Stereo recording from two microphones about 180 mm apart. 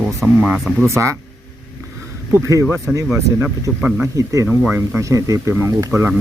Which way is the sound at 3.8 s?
15° right (ahead or behind).